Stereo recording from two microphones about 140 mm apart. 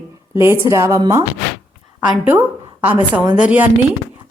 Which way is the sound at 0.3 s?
20° right (ahead or behind).